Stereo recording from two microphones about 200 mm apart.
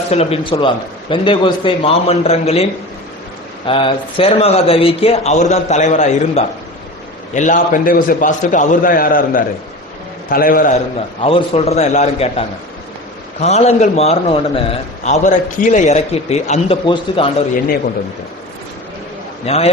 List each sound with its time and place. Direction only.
0.1 s a man's voice: 30° left (ahead or behind)
3.7 s a man's voice: 25° left (ahead or behind); by 10.8 s 45° left (ahead or behind)
11.2 s a man's voice: 30° left (ahead or behind)
19.5 s a man's voice: 30° left (ahead or behind)